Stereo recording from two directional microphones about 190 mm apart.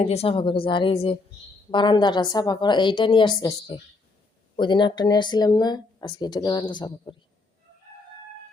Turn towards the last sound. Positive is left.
turn(degrees=25)  # may be behind; listen again after turning